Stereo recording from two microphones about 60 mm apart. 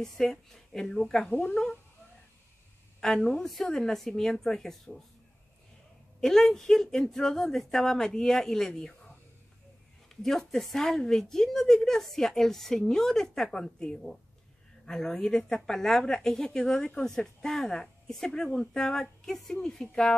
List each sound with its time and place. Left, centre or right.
0.0 s speech: centre
1.3 s speech: left
3.0 s speech: centre
6.2 s speech: centre